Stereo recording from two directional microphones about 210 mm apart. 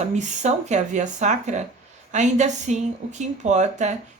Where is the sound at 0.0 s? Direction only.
35° right (ahead or behind).